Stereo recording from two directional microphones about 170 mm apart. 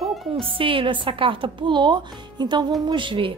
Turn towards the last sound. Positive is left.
turn(degrees=-30)  # may be behind; listen again after turning